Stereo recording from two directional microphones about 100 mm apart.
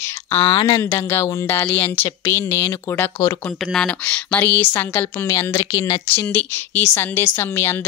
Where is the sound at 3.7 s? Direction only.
10° left (ahead or behind).